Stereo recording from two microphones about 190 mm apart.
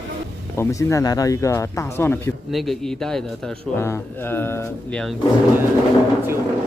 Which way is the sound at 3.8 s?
10° left (ahead or behind).